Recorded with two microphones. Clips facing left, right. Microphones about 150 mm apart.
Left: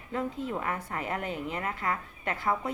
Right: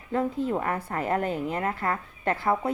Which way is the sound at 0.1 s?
40° right (ahead or behind).